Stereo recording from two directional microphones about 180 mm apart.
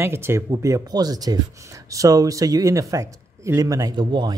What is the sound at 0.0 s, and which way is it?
Speech, 15° right (ahead or behind).